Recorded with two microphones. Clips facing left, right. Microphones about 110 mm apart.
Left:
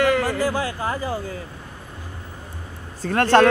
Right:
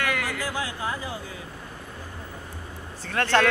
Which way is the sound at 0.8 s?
45° left (ahead or behind).